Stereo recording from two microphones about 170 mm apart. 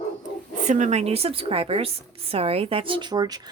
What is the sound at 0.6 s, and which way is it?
A woman's voice, 45° right (ahead or behind).